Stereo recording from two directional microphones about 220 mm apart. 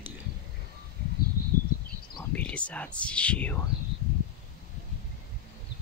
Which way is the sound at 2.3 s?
5° left (ahead or behind).